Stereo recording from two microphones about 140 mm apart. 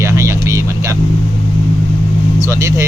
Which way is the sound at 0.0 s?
20° right (ahead or behind).